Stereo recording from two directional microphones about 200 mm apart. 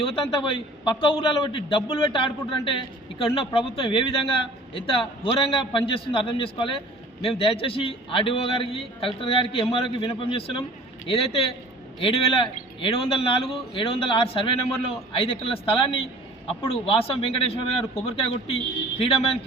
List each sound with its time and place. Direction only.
0.0 s a man's voice: 25° left (ahead or behind)